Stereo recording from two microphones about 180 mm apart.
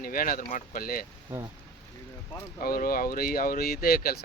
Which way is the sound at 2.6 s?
55° left (ahead or behind).